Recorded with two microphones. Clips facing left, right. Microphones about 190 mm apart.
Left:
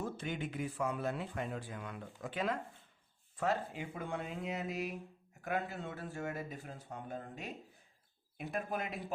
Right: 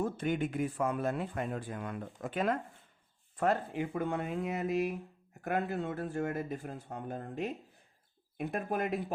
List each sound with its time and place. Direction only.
0.0 s speech: 50° right (ahead or behind)